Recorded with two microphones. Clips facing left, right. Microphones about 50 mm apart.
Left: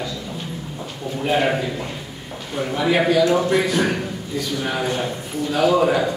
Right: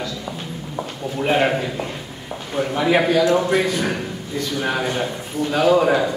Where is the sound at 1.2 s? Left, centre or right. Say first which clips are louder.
Right 2 dB; right.